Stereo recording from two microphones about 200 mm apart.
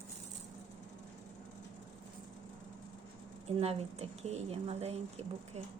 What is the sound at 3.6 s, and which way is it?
Speech, 30° right (ahead or behind).